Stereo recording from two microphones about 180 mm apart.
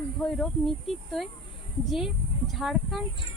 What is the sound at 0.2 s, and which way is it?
Speech, 5° left (ahead or behind).